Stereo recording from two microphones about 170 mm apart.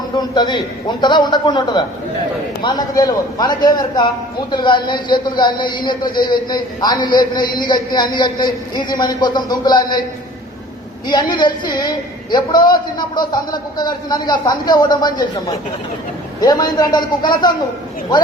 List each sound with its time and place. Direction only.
0.2 s a man's voice: 25° left (ahead or behind)
11.0 s a man's voice: 25° left (ahead or behind)